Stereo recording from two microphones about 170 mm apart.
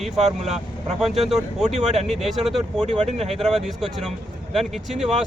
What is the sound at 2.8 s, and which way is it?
Speech, 40° right (ahead or behind).